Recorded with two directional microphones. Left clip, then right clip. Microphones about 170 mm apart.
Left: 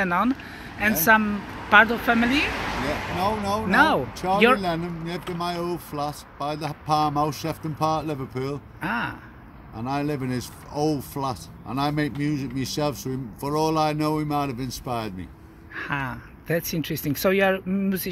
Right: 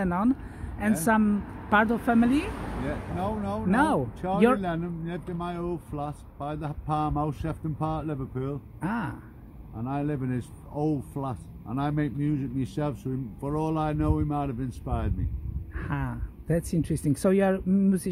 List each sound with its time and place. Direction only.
0.0 s speech: 25° right (ahead or behind)
3.2 s speech: 10° right (ahead or behind)
3.7 s speech: 30° right (ahead or behind)
4.6 s speech: centre (ahead or behind)
8.8 s speech: 30° right (ahead or behind)
9.8 s speech: centre (ahead or behind)
15.7 s speech: 30° right (ahead or behind)